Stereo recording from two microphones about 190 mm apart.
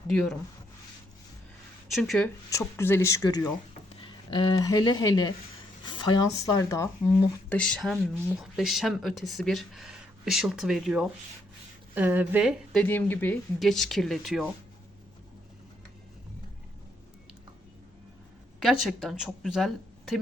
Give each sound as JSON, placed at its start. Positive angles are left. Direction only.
{"t": 1.9, "sound": "speech", "side_deg": 0}
{"t": 2.5, "sound": "a woman's voice", "side_deg": 15}
{"t": 7.5, "sound": "speech", "side_deg": 5}
{"t": 12.8, "sound": "speech", "side_deg": 10}
{"t": 18.6, "sound": "speech", "side_deg": 0}